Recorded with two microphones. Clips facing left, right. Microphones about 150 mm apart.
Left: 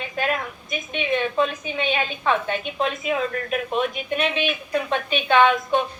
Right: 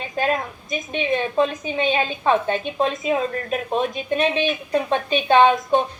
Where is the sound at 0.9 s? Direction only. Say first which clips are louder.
Right 2 dB; 30° right (ahead or behind).